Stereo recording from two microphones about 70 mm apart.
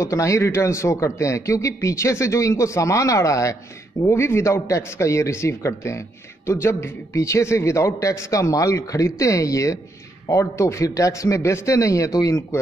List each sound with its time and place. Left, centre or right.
0.0 s a man's voice: left